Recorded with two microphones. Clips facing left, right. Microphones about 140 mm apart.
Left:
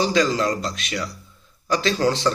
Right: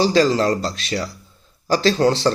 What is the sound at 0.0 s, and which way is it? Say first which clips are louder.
A man's voice: right 4 dB; 35° right (ahead or behind).